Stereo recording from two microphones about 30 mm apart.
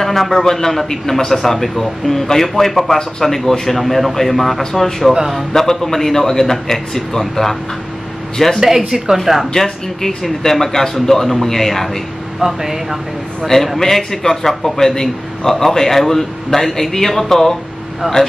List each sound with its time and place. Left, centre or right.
0.0 s a man's voice: centre
8.5 s speech: centre
9.5 s a man's voice: centre
12.4 s speech: centre
13.4 s a man's voice: centre
18.0 s speech: right